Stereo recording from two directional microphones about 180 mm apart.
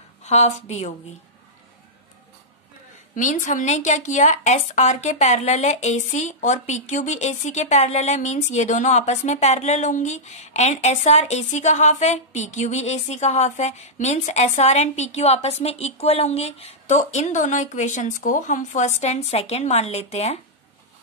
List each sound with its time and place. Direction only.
0.2 s a woman's voice: 40° left (ahead or behind)
3.2 s a woman's voice: 45° left (ahead or behind)